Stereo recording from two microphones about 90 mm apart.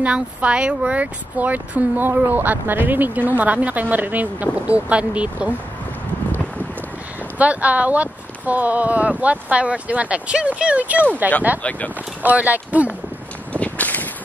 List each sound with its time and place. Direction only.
0.0 s speech: 15° right (ahead or behind)
7.3 s speech: 15° right (ahead or behind)
13.5 s a sound: 15° left (ahead or behind)